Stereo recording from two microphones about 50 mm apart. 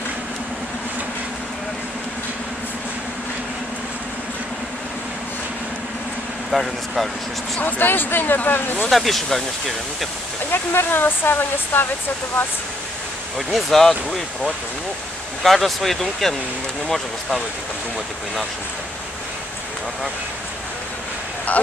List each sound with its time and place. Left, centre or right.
6.5 s speech: centre
7.6 s speech: left
8.9 s speech: centre
10.5 s speech: left
13.5 s speech: centre